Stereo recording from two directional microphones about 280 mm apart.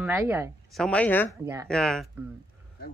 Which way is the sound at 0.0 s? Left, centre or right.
Centre.